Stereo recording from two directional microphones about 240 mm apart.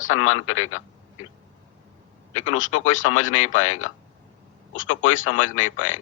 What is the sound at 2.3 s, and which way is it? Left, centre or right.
A man's voice, left.